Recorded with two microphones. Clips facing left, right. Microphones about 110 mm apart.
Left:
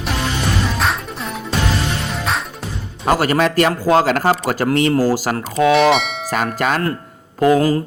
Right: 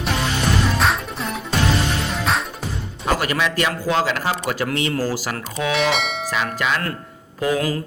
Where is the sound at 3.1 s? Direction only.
40° left (ahead or behind).